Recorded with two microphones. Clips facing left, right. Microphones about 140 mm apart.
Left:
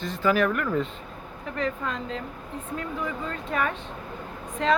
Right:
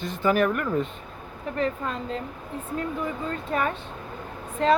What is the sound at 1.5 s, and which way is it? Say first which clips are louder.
Speech: right 2 dB; 35° right (ahead or behind).